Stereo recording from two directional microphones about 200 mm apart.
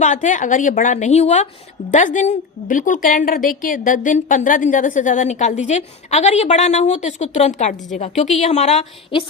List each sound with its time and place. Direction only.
0.0 s a woman's voice: 40° left (ahead or behind)